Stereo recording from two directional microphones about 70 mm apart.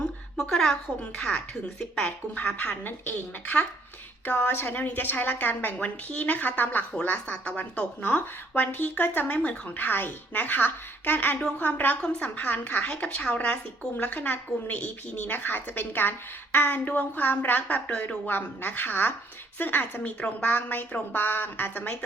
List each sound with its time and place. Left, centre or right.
0.3 s a woman's voice: centre
1.8 s speech: centre